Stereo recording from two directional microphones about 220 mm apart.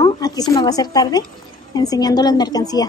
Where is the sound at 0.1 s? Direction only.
15° left (ahead or behind).